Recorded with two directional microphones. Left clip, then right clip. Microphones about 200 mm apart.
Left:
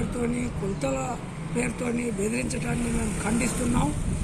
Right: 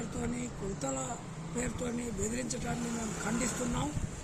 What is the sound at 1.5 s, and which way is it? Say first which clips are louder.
Speech: left 8 dB; 10° right (ahead or behind).